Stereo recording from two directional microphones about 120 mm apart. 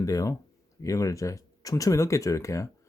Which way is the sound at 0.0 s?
30° left (ahead or behind).